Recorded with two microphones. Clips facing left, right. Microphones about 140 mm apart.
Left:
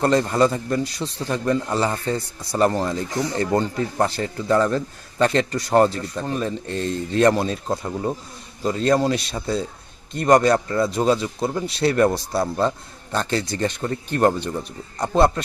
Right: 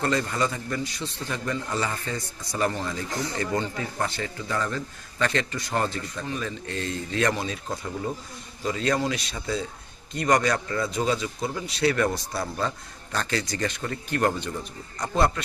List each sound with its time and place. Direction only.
0.0 s a man's voice: 40° left (ahead or behind)
10.5 s a man's voice: 30° left (ahead or behind)
10.9 s a man's voice: 45° left (ahead or behind)